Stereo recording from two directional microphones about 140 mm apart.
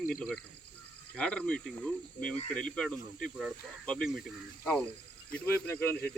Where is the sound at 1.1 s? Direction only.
5° left (ahead or behind).